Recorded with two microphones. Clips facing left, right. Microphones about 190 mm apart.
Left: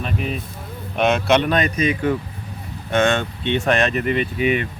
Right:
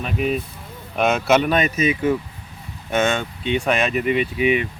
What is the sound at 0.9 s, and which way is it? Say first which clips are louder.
Speech: even; centre (ahead or behind).